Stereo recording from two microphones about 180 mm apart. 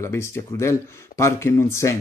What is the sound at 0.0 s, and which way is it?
Speech, 15° left (ahead or behind).